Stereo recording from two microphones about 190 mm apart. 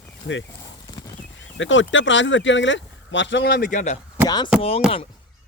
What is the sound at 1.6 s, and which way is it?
Speech, 80° left.